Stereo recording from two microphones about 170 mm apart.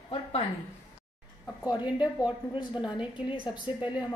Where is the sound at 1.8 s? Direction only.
5° right (ahead or behind).